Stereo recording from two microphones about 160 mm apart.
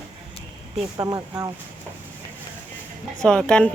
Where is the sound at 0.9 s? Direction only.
25° right (ahead or behind).